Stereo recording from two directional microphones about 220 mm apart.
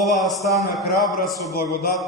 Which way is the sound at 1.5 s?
45° left (ahead or behind).